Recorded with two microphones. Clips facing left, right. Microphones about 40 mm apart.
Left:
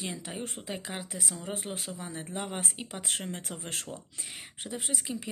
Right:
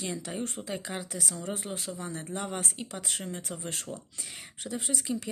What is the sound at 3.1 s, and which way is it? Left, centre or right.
Speech, left.